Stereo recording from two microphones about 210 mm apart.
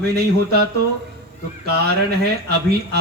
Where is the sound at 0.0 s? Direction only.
50° right (ahead or behind).